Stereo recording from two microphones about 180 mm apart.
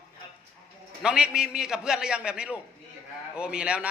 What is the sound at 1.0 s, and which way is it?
A man's voice, 5° right (ahead or behind).